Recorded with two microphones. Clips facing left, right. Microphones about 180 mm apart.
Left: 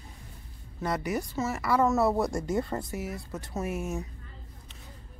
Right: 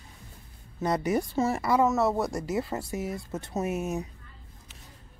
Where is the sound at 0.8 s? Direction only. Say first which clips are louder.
Right 4 dB; 20° right (ahead or behind).